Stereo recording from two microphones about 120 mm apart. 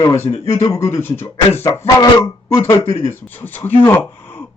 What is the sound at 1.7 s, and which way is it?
Speech, 30° left (ahead or behind).